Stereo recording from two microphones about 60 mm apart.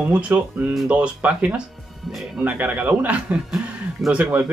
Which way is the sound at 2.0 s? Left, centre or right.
Centre.